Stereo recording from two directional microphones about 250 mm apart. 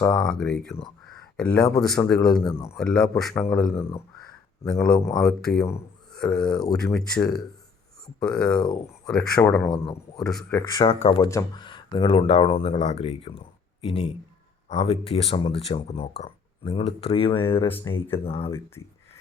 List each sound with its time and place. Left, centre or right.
0.0 s speech: centre
1.0 s a sound: centre
1.8 s speech: centre
2.5 s speech: centre
2.7 s speech: centre
9.7 s speech: left
10.2 s speech: centre
10.5 s speech: centre